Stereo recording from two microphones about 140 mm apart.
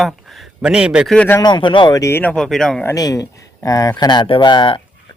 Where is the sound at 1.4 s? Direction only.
30° left (ahead or behind).